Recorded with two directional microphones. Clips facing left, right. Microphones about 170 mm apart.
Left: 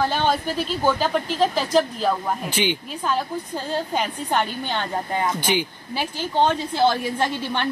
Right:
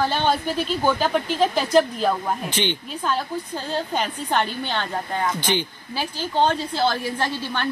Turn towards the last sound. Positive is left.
turn(degrees=20)  # may be behind; listen again after turning